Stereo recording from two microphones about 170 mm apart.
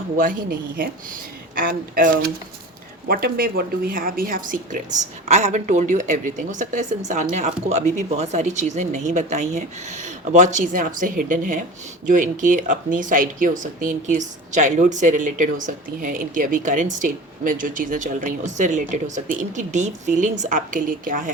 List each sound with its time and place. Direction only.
0.2 s speech: 55° right (ahead or behind)